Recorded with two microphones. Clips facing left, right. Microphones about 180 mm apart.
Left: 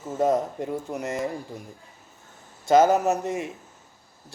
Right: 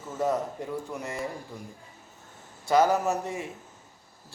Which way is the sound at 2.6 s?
20° left (ahead or behind).